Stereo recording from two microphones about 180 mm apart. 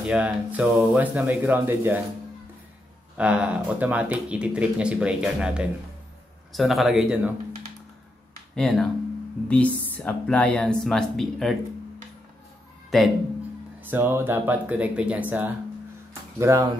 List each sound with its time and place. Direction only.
0.0 s speech: 5° right (ahead or behind)
3.2 s speech: 5° right (ahead or behind)
8.5 s speech: 5° left (ahead or behind)
12.9 s speech: centre (ahead or behind)
13.7 s speech: 10° right (ahead or behind)
16.1 s music: 15° right (ahead or behind)